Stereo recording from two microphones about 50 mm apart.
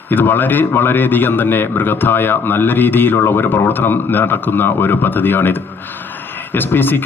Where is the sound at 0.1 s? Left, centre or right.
Left.